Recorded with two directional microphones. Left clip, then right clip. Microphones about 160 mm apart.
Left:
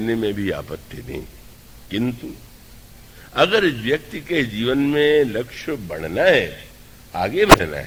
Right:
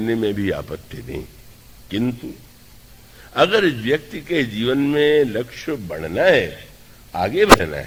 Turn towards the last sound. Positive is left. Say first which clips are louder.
# even
turn(degrees=50)  # may be behind; listen again after turning